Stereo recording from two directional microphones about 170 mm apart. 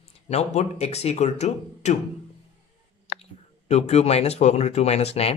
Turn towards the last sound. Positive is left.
turn(degrees=35)  # may be behind; listen again after turning